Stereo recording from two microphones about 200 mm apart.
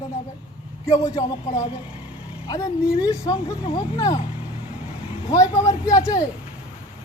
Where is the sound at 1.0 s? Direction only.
15° left (ahead or behind).